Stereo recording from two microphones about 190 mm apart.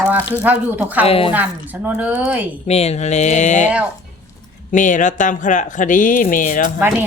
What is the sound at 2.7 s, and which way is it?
Speech, 35° left (ahead or behind).